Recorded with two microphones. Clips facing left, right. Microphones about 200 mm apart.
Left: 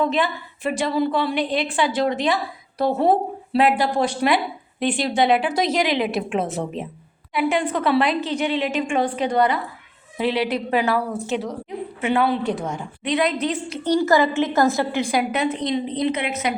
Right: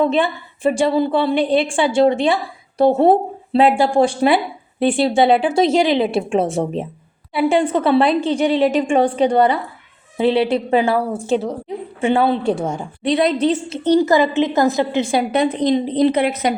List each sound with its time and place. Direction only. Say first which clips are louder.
0.0 s a woman's voice: right 5 dB; 30° right (ahead or behind)